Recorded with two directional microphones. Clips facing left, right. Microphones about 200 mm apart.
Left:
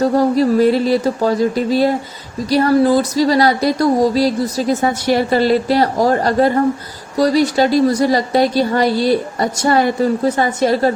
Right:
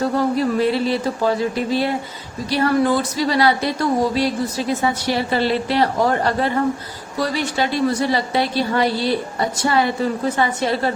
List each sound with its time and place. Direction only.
0.1 s speech: 40° left (ahead or behind)